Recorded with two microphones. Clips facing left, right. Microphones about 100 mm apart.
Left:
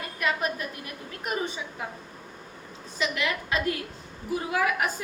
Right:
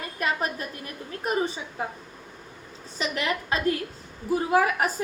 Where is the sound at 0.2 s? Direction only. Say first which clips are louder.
Even; 35° right (ahead or behind).